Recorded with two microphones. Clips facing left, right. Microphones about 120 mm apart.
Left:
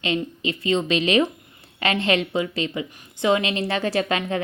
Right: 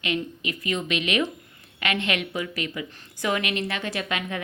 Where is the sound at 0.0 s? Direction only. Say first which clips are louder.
Left 4 dB; 30° left (ahead or behind).